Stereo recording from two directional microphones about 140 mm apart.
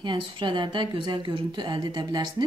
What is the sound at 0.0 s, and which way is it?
A woman's voice, 35° right (ahead or behind).